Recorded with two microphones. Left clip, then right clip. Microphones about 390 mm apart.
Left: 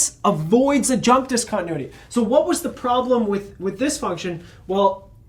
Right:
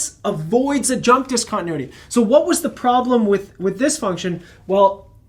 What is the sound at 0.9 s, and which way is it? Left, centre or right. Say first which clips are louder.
Speech: right 2 dB; centre.